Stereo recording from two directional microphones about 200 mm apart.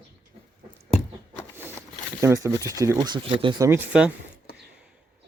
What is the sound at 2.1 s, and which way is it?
Speech, 15° right (ahead or behind).